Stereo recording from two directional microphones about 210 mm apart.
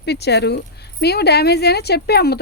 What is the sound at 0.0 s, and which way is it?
Speech, 50° left (ahead or behind).